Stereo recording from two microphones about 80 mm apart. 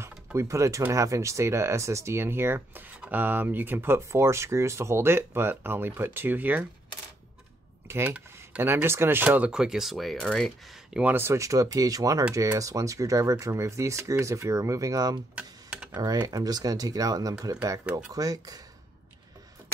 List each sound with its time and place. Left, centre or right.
0.0 s typing: right
0.9 s speech: right
8.6 s speech: right
9.5 s speech: centre
10.9 s speech: centre
11.1 s speech: right
15.3 s computer keyboard: centre
15.9 s speech: right